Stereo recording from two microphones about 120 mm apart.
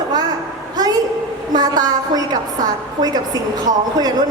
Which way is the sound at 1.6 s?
35° right (ahead or behind).